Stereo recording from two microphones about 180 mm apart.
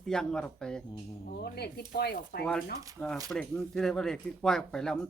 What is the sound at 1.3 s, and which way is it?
Speech, 65° left (ahead or behind).